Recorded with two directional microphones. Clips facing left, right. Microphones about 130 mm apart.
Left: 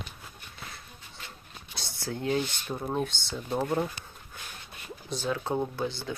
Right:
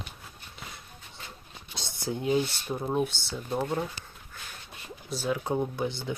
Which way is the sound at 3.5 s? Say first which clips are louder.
Left 1 dB; 5° left (ahead or behind).